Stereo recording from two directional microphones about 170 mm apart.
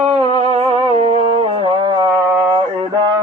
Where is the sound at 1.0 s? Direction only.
35° right (ahead or behind).